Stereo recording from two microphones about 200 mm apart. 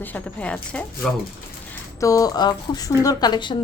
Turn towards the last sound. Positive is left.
turn(degrees=20)  # may be behind; listen again after turning